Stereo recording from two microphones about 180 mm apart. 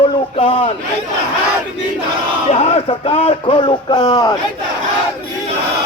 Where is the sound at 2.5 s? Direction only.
35° left (ahead or behind).